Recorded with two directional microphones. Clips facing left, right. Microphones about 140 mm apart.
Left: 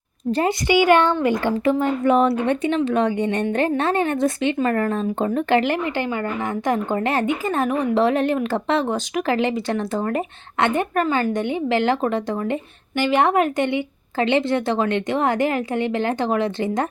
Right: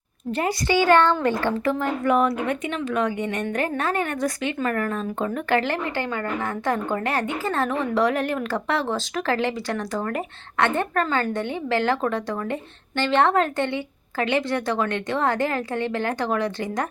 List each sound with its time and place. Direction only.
0.3 s a woman's voice: 35° left (ahead or behind)
0.7 s a woman's voice: 15° left (ahead or behind)